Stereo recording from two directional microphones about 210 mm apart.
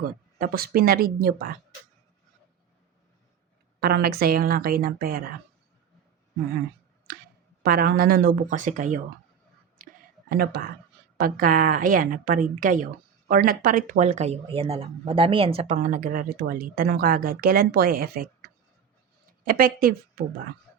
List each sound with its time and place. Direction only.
0.3 s speech: 45° right (ahead or behind)
3.8 s speech: 45° right (ahead or behind)
7.6 s speech: 45° right (ahead or behind)
9.7 s whispering: 45° right (ahead or behind)
11.2 s speech: 40° right (ahead or behind)
19.5 s speech: 45° right (ahead or behind)